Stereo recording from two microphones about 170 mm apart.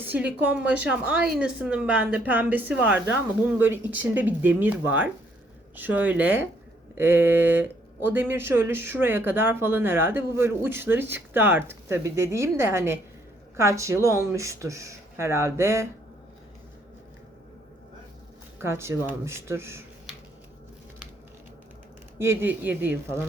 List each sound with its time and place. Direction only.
0.0 s speech: 10° right (ahead or behind)
18.6 s speech: 15° right (ahead or behind)
22.2 s speech: 15° right (ahead or behind)